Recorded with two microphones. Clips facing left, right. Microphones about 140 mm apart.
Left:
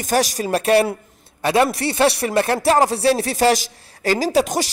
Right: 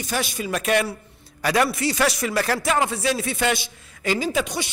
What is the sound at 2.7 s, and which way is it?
A woman's voice, 35° left (ahead or behind).